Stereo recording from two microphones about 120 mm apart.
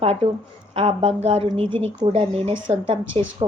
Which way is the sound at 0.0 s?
55° right (ahead or behind).